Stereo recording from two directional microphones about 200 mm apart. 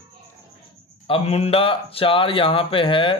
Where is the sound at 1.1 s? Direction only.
30° left (ahead or behind).